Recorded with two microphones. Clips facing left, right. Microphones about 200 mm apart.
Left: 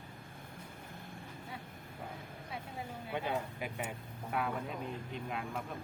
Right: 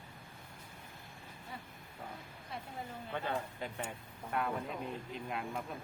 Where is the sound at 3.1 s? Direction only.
15° left (ahead or behind).